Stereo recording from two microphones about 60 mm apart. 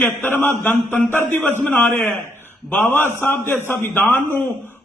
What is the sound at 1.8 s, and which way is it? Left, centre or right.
Speech, centre.